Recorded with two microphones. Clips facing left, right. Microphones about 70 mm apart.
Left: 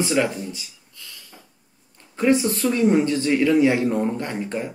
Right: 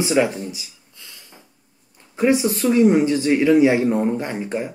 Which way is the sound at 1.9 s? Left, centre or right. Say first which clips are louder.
Right 1 dB; centre.